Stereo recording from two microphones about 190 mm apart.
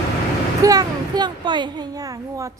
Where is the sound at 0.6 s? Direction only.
20° right (ahead or behind).